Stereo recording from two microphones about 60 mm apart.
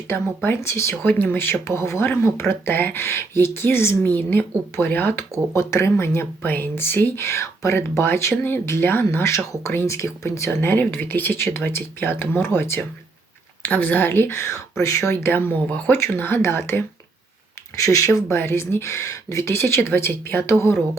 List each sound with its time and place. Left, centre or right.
0.1 s speech: left
1.0 s speech: left
5.5 s speech: left
9.3 s speech: left
10.6 s speech: left
15.2 s speech: left
17.8 s speech: left
19.5 s speech: left